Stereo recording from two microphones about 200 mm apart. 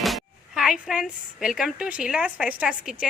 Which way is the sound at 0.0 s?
Centre (ahead or behind).